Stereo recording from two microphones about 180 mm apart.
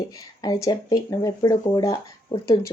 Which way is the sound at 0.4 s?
20° left (ahead or behind).